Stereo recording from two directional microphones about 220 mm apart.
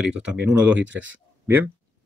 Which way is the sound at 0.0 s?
5° right (ahead or behind).